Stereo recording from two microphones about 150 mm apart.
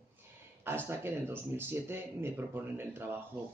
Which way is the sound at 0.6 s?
15° right (ahead or behind).